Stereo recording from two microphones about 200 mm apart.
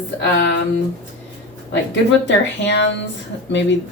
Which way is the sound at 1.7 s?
65° left (ahead or behind).